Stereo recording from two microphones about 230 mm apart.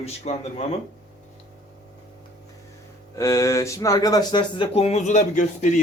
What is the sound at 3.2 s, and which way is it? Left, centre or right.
Speech, centre.